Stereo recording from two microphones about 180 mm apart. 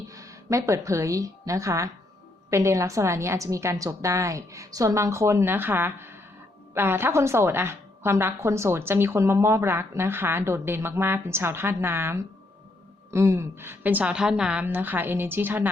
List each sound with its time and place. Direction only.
0.1 s a woman's voice: 15° right (ahead or behind)